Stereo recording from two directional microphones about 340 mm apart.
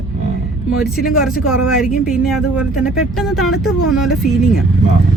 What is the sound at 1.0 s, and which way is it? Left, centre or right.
Speech, centre.